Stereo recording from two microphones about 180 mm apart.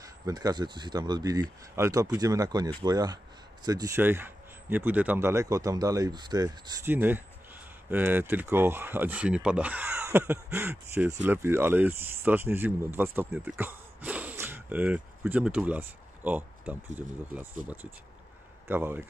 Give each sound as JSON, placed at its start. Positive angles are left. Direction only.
{"t": 0.0, "sound": "speech", "side_deg": -20}
{"t": 18.7, "sound": "speech", "side_deg": -10}